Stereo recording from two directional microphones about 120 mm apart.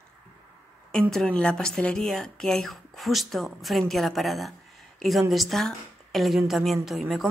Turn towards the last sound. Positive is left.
turn(degrees=0)  # may be behind; listen again after turning